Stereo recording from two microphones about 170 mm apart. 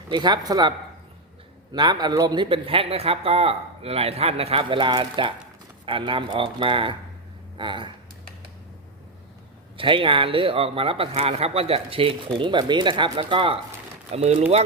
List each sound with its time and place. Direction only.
0.1 s speech: 25° right (ahead or behind)
1.7 s speech: 25° right (ahead or behind)
9.7 s speech: 30° right (ahead or behind)